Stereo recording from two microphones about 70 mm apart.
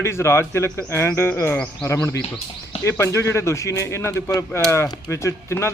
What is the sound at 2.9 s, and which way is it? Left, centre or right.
A man's voice, left.